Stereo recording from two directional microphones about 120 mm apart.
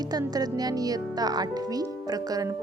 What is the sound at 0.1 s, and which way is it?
Speech, 30° right (ahead or behind).